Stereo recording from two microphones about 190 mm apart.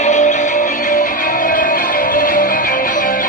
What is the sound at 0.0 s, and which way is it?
Music, 40° left (ahead or behind).